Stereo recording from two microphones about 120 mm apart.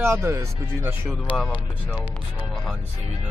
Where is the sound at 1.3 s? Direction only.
5° left (ahead or behind).